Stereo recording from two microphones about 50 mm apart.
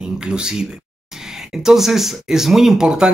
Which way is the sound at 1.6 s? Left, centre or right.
Centre.